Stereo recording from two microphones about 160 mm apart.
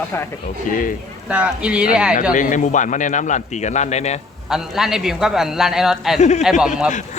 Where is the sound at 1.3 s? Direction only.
5° right (ahead or behind).